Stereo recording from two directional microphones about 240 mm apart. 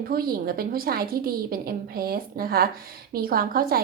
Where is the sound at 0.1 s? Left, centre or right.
Right.